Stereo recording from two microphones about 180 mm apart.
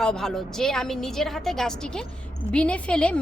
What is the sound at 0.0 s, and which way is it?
A woman's voice, 5° left (ahead or behind).